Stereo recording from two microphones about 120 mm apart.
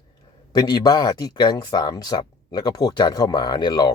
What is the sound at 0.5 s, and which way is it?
Speech, 35° left (ahead or behind).